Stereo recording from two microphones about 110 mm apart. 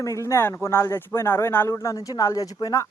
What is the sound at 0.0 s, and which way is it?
A man's voice, 30° left (ahead or behind).